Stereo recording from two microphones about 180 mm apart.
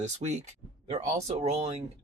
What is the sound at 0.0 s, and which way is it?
Speech, 40° right (ahead or behind).